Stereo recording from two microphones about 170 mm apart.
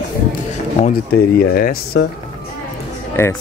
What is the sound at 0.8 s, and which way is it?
Speech, 60° left (ahead or behind).